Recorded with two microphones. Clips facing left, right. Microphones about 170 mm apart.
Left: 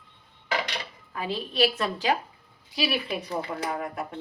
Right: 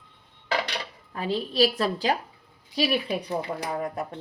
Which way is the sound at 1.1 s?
35° right (ahead or behind).